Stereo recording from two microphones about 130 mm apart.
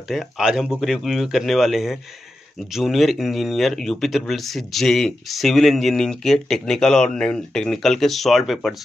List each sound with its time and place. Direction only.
0.1 s speech: 5° right (ahead or behind)